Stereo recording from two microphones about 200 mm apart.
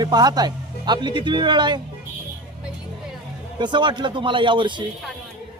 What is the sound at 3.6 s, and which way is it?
Speech, 20° right (ahead or behind).